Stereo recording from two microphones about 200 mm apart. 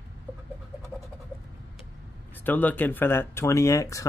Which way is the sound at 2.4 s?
10° left (ahead or behind).